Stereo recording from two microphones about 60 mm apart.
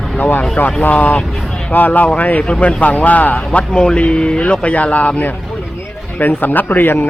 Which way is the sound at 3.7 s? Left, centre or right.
Centre.